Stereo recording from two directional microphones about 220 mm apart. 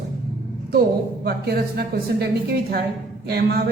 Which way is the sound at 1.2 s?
45° right (ahead or behind).